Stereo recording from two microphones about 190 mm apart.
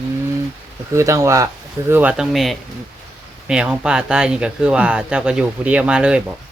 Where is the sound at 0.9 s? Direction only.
15° right (ahead or behind).